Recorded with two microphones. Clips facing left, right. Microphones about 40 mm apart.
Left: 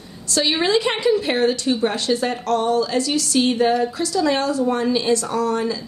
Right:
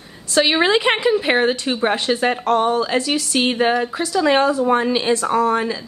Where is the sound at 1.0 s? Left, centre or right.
Right.